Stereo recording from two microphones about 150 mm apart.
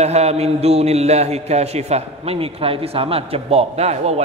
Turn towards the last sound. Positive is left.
turn(degrees=-45)  # may be behind; listen again after turning